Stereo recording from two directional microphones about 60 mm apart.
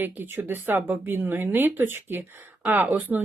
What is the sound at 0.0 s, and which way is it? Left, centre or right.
Speech, right.